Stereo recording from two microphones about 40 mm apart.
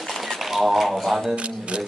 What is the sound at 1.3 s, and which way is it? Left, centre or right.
Speech, right.